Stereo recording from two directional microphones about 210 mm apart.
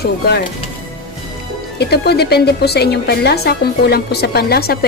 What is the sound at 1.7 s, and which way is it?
A woman's voice, 50° left (ahead or behind).